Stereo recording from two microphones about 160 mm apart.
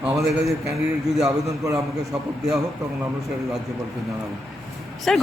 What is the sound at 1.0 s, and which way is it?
Speech, centre (ahead or behind).